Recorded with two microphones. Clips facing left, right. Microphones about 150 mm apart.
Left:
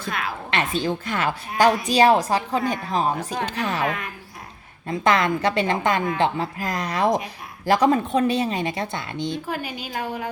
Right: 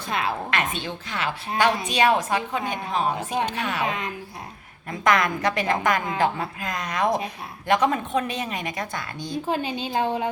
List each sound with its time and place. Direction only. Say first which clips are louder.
0.1 s a woman's voice: right 3 dB; 25° right (ahead or behind)
0.5 s a woman's voice: left 4 dB; 35° left (ahead or behind); by 1.3 s 50° left (ahead or behind)
1.9 s a woman's voice: left 4 dB; 35° left (ahead or behind)
3.8 s a woman's voice: left 1 dB; 20° right (ahead or behind)
4.9 s a woman's voice: left 2 dB; 30° left (ahead or behind)
9.5 s a woman's voice: right 4 dB; 25° right (ahead or behind)